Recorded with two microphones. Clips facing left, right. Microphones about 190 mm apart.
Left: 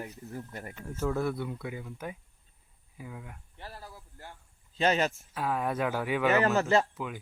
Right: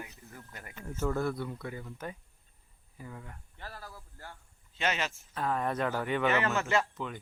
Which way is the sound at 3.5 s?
20° left (ahead or behind).